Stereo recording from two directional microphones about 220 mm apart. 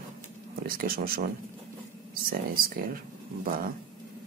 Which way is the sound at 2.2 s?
40° right (ahead or behind).